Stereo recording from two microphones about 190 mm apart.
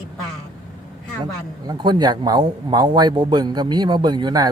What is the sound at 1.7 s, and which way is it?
Speech, 20° right (ahead or behind).